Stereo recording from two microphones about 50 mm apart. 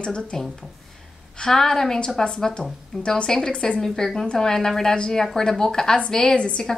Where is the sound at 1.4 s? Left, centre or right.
Centre.